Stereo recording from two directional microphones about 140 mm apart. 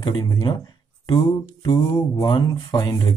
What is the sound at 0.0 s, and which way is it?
Speech, 30° left (ahead or behind).